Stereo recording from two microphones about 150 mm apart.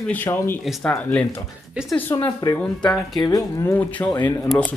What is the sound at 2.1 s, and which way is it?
Speech, 20° left (ahead or behind).